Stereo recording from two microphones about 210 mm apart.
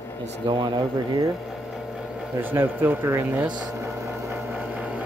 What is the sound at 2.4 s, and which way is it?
Speech, 10° right (ahead or behind).